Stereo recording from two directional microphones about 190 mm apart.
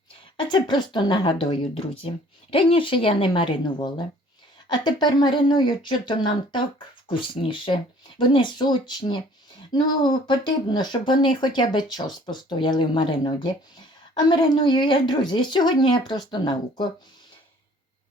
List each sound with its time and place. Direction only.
0.3 s speech: 25° left (ahead or behind)